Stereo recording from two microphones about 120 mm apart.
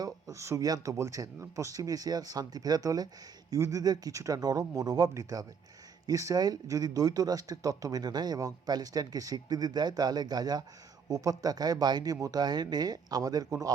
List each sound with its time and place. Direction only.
0.0 s speech: 25° right (ahead or behind)